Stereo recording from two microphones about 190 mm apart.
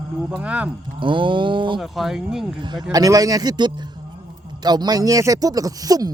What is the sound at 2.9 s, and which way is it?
Speech, 20° right (ahead or behind).